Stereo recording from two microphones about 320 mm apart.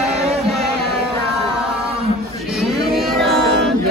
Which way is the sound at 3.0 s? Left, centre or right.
Centre.